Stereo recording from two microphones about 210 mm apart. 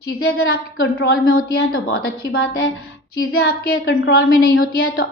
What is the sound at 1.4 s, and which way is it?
Speech, 45° left (ahead or behind).